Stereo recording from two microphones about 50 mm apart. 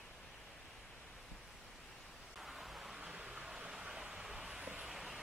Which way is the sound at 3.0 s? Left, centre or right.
Centre.